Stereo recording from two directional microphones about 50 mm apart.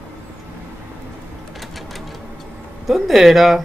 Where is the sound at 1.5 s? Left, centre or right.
Centre.